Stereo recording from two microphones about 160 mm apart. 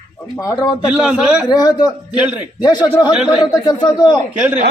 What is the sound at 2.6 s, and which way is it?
A man's voice, 25° left (ahead or behind).